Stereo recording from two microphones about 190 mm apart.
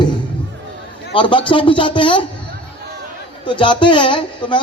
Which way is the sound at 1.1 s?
25° left (ahead or behind).